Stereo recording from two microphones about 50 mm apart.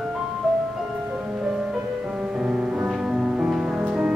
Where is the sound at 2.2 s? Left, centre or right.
Right.